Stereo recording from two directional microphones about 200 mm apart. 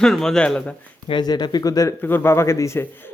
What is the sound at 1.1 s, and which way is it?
Speech, 20° left (ahead or behind).